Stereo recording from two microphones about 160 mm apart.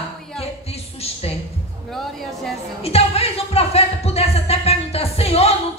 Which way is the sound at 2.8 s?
40° left (ahead or behind).